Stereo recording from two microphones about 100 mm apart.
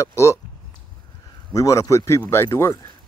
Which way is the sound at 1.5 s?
35° left (ahead or behind).